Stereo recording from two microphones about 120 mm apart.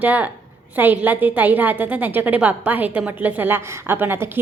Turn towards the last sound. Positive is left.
turn(degrees=-15)  # may be behind; listen again after turning